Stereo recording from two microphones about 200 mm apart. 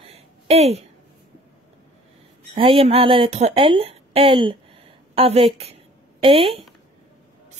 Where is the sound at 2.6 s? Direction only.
25° right (ahead or behind).